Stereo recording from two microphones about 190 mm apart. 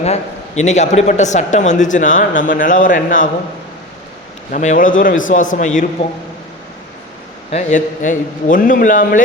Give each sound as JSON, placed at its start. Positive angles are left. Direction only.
{"t": 0.0, "sound": "a man's voice", "side_deg": 35}
{"t": 4.5, "sound": "a man's voice", "side_deg": 40}
{"t": 7.5, "sound": "a man's voice", "side_deg": 40}